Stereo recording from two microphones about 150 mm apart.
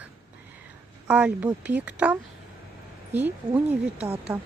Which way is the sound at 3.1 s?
10° right (ahead or behind).